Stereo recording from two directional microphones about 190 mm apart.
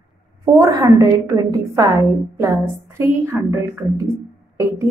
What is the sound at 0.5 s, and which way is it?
A woman's voice, 20° right (ahead or behind).